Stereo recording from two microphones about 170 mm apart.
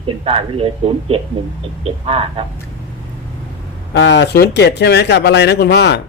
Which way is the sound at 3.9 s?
90° left.